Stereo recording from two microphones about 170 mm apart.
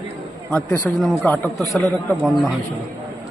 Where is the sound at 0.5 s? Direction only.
10° left (ahead or behind).